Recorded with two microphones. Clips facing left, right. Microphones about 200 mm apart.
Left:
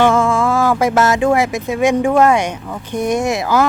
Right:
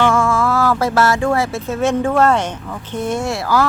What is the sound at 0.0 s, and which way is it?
Speech, 20° left (ahead or behind).